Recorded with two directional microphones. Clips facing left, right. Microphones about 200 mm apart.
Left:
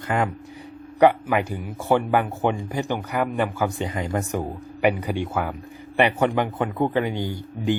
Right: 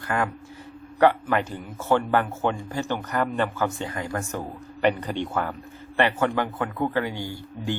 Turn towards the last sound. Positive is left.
turn(degrees=20)  # may be behind; listen again after turning